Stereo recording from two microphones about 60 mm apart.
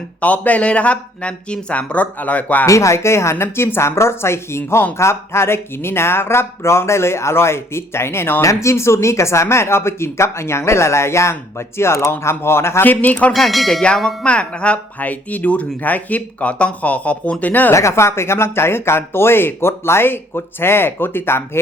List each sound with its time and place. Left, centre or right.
0.2 s speech: left
2.6 s speech: left
12.8 s speech: left
13.3 s bell: centre
13.8 s a sound: centre
14.3 s speech: centre
17.7 s speech: left